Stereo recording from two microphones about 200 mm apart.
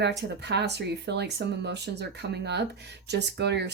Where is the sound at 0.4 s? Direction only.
60° right (ahead or behind).